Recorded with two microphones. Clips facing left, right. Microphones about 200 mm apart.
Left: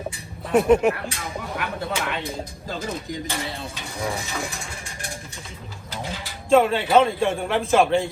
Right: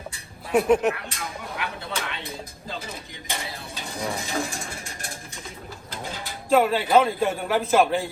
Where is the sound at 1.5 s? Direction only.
50° left (ahead or behind).